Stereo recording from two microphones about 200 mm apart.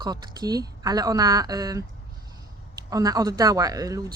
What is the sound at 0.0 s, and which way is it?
Speech, 20° right (ahead or behind).